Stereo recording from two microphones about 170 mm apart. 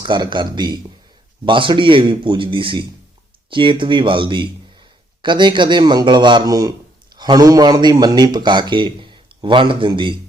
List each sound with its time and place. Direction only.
0.0 s a man's voice: 25° right (ahead or behind)